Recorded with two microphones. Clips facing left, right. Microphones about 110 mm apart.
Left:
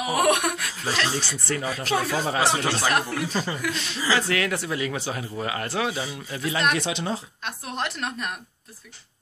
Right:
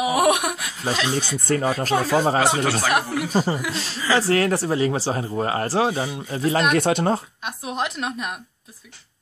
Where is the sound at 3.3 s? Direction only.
40° right (ahead or behind).